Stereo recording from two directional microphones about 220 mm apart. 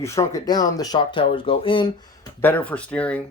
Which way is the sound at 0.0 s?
15° left (ahead or behind).